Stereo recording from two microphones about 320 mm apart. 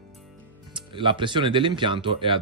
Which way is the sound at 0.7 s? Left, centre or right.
Centre.